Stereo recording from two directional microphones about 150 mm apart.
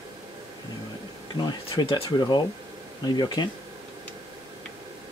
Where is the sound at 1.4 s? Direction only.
30° left (ahead or behind).